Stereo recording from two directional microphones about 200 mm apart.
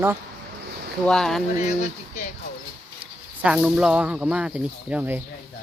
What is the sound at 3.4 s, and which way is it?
Speech, 5° right (ahead or behind).